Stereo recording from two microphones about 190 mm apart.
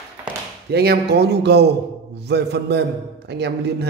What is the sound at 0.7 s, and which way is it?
Speech, 60° right (ahead or behind).